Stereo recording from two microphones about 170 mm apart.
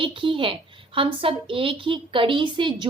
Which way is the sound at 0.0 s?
30° right (ahead or behind).